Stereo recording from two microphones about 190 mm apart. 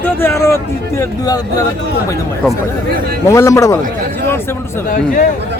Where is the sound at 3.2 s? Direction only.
15° left (ahead or behind).